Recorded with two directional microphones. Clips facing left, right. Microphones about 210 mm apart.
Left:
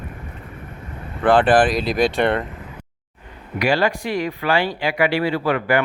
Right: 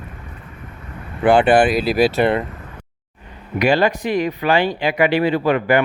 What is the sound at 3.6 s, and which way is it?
Speech, 20° right (ahead or behind).